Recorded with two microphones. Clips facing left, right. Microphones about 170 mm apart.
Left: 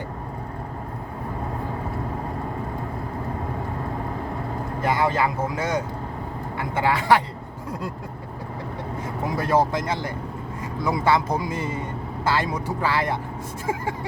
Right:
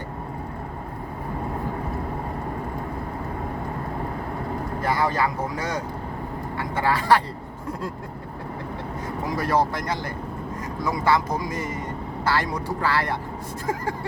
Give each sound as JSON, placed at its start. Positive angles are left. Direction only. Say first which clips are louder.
{"t": 4.8, "sound": "a man's voice", "louder": "left 2 dB", "side_deg": 20}
{"t": 9.4, "sound": "a man's voice", "louder": "left 2 dB", "side_deg": 25}